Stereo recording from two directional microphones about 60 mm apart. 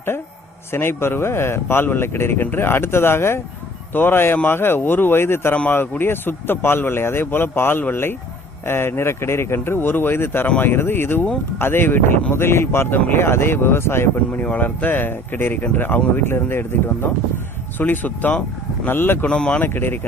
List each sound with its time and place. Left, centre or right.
0.7 s speech: left
14.4 s speech: left
19.2 s speech: centre
19.6 s speech: left